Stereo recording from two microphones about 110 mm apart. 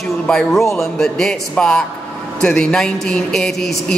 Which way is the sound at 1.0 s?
5° left (ahead or behind).